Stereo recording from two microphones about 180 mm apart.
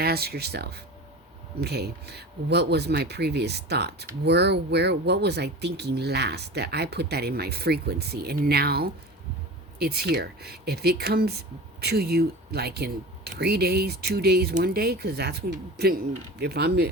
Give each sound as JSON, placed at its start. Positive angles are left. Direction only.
{"t": 0.0, "sound": "speech", "side_deg": -60}